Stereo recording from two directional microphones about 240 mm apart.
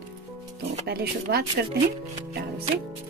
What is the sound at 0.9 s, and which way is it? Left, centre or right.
Speech, right.